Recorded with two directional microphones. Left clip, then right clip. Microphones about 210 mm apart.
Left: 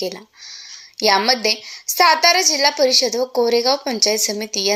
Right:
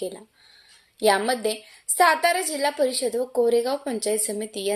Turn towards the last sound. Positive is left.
turn(degrees=10)  # may be behind; listen again after turning